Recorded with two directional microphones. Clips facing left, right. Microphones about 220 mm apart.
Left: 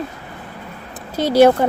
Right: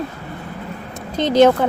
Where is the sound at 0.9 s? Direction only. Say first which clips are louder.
Left 1 dB; 10° left (ahead or behind).